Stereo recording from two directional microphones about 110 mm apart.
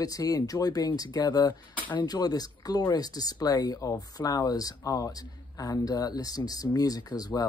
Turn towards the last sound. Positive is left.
turn(degrees=35)  # may be behind; listen again after turning